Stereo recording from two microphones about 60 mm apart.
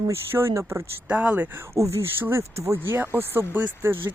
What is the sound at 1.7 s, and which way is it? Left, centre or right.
Speech, right.